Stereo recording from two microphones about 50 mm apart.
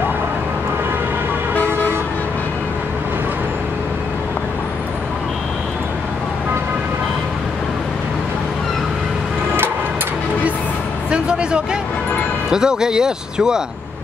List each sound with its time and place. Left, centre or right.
11.1 s music: centre
12.4 s speech: centre